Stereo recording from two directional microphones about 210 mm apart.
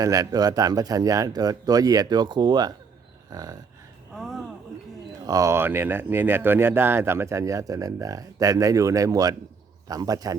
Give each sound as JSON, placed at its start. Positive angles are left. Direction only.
{"t": 0.0, "sound": "speech", "side_deg": -15}
{"t": 4.2, "sound": "a sound", "side_deg": 0}
{"t": 5.2, "sound": "speech", "side_deg": -15}